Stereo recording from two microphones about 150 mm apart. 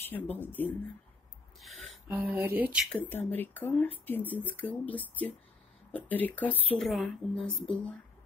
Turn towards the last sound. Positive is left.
turn(degrees=5)  # may be behind; listen again after turning